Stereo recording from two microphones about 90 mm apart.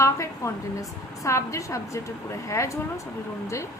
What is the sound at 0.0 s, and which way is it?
A woman's voice, 35° left (ahead or behind).